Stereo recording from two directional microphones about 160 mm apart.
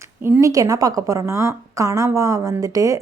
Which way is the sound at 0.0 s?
15° right (ahead or behind).